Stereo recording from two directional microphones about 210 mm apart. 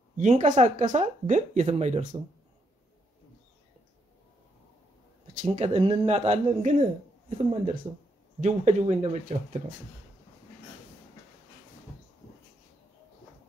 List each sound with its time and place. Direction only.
0.2 s speech: 35° right (ahead or behind)
5.4 s speech: 25° right (ahead or behind)